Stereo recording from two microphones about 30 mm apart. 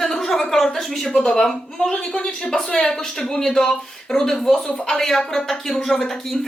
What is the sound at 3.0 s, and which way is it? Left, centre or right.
A woman's voice, centre.